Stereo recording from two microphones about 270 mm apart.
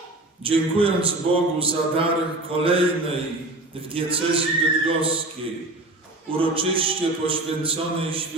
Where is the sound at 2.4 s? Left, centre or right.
Centre.